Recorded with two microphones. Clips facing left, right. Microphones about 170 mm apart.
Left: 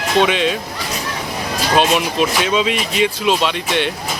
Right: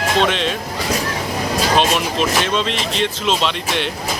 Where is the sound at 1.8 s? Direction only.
5° left (ahead or behind).